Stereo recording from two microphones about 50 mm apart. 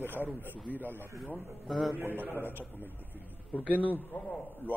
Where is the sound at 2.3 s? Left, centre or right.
Left.